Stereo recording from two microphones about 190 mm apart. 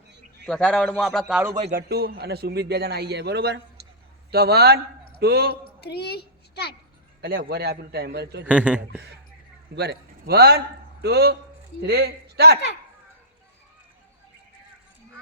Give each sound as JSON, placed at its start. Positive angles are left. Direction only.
{"t": 0.4, "sound": "a man's voice", "side_deg": 5}
{"t": 1.5, "sound": "a man's voice", "side_deg": -40}
{"t": 1.9, "sound": "a man's voice", "side_deg": -55}
{"t": 5.8, "sound": "a child's voice", "side_deg": 60}
{"t": 7.2, "sound": "a man's voice", "side_deg": -60}
{"t": 8.4, "sound": "speech", "side_deg": -5}
{"t": 9.7, "sound": "a man's voice", "side_deg": -60}